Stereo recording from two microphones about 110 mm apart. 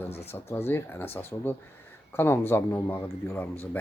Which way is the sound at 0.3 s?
20° left (ahead or behind).